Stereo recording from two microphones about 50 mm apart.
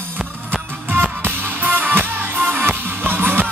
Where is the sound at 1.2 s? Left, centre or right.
Right.